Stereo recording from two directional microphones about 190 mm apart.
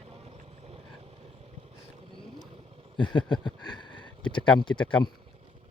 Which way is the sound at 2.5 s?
30° right (ahead or behind).